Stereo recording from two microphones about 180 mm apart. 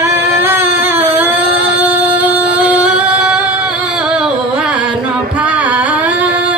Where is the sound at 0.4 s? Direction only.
10° right (ahead or behind).